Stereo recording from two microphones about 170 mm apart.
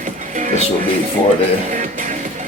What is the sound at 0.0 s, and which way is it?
Music, 50° right (ahead or behind).